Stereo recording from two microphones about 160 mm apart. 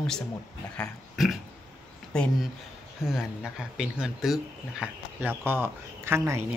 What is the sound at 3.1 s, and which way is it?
Speech, 5° right (ahead or behind).